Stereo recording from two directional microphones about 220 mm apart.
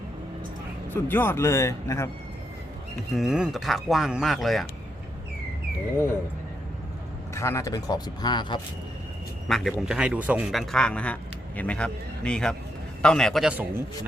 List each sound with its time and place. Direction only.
1.0 s speech: 10° left (ahead or behind)
3.2 s a man's voice: 5° right (ahead or behind)
7.3 s speech: 10° left (ahead or behind)
9.5 s a man's voice: centre (ahead or behind)